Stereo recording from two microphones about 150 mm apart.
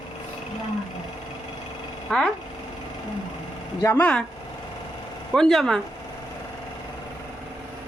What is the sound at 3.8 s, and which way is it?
Speech, 15° left (ahead or behind).